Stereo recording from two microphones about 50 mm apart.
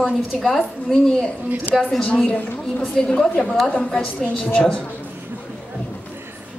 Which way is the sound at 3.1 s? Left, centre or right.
Centre.